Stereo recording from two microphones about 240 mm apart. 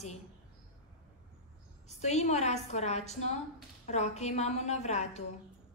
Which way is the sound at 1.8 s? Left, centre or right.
Left.